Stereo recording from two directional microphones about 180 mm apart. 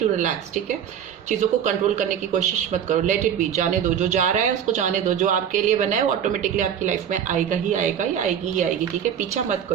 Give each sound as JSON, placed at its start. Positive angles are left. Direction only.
{"t": 1.3, "sound": "speech", "side_deg": -40}